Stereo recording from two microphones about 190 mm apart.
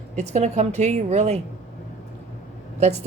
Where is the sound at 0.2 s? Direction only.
35° right (ahead or behind).